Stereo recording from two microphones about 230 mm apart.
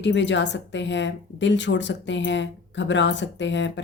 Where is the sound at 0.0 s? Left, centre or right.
Left.